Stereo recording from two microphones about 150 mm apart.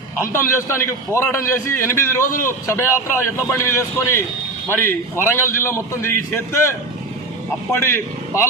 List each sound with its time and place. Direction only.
0.2 s a man's voice: 20° left (ahead or behind)